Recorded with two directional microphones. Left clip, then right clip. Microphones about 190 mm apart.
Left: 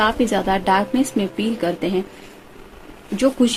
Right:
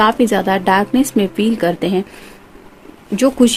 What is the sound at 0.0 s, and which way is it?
Speech, 50° right (ahead or behind).